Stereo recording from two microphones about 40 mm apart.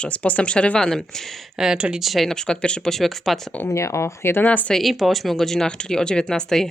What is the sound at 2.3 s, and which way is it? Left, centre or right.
Speech, centre.